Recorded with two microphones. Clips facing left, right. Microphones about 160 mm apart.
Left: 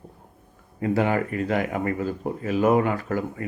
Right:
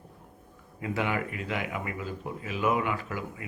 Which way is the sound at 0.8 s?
40° left (ahead or behind).